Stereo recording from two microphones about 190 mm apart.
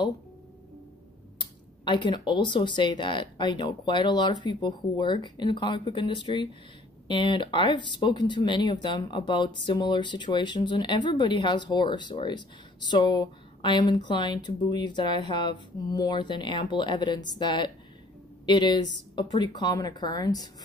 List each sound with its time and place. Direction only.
1.4 s speech: 25° left (ahead or behind)